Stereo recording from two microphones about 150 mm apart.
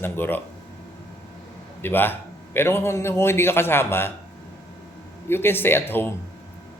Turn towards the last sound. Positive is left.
turn(degrees=15)  # may be behind; listen again after turning